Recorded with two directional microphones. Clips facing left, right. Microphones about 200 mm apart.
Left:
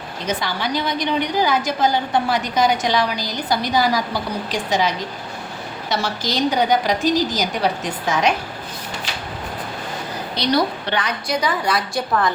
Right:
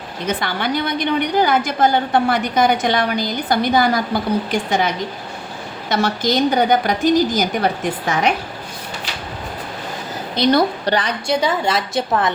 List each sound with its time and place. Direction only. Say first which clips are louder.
0.3 s a woman's voice: right 2 dB; 55° right (ahead or behind)
5.9 s a woman's voice: right 5 dB; 55° right (ahead or behind)
10.3 s a woman's voice: right 4 dB; 50° right (ahead or behind)
10.9 s a woman's voice: right 2 dB; 30° right (ahead or behind)